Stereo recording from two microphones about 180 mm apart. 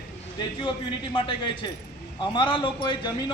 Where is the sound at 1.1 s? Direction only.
30° left (ahead or behind).